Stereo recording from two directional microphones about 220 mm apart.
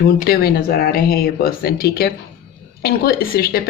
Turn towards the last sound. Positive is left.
turn(degrees=45)  # may be behind; listen again after turning